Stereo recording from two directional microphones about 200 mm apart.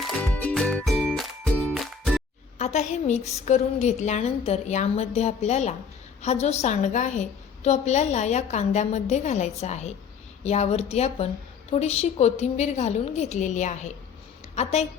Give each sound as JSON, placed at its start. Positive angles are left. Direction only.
{"t": 0.2, "sound": "music", "side_deg": 5}
{"t": 2.6, "sound": "a woman's voice", "side_deg": 35}